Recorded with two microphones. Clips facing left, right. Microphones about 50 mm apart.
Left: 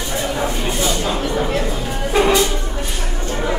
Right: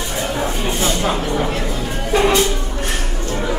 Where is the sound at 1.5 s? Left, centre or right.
Left.